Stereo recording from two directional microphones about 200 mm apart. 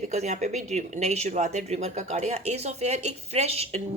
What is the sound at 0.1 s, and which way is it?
Speech, 35° right (ahead or behind).